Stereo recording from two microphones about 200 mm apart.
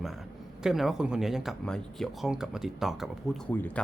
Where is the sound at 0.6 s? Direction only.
Centre (ahead or behind).